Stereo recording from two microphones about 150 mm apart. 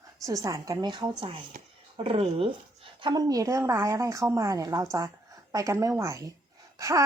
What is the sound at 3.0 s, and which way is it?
Speech, 25° right (ahead or behind).